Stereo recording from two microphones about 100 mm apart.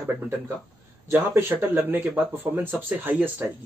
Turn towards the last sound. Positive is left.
turn(degrees=-20)  # may be behind; listen again after turning